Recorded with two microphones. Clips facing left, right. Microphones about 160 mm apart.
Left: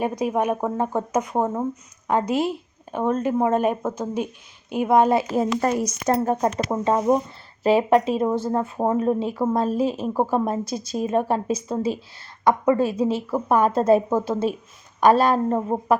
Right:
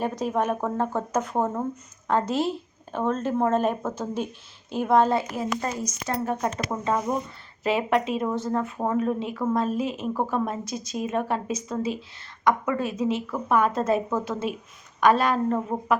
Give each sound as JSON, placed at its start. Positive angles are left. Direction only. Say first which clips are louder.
{"t": 0.0, "sound": "speech", "louder": "left 3 dB", "side_deg": 10}
{"t": 5.4, "sound": "speech", "louder": "left 7 dB", "side_deg": 65}
{"t": 6.1, "sound": "a woman's voice", "louder": "left 6 dB", "side_deg": 40}
{"t": 6.6, "sound": "a woman's voice", "louder": "left 5 dB", "side_deg": 30}